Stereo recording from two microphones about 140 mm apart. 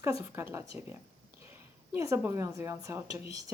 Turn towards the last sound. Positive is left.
turn(degrees=-20)  # may be behind; listen again after turning